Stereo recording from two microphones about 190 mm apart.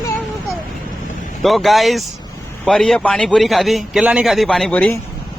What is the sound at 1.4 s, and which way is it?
A man's voice, centre (ahead or behind).